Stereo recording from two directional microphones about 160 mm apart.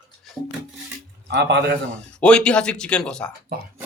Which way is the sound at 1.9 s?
5° left (ahead or behind).